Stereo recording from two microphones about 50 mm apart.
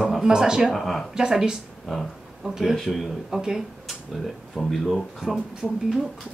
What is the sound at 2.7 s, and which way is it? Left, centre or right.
Speech, centre.